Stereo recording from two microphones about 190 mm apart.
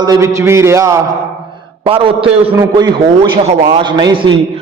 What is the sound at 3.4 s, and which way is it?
Speech, 30° right (ahead or behind).